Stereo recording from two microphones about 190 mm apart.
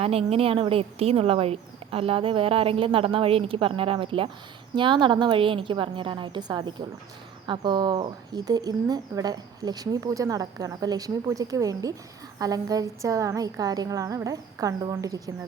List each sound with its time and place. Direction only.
0.0 s a woman's voice: 30° right (ahead or behind)